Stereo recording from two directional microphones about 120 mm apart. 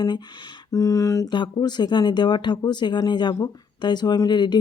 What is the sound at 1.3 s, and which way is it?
Speech, 40° left (ahead or behind).